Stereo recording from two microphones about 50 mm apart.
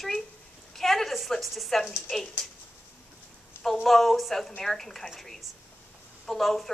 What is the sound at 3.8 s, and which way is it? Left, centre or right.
A woman's voice, centre.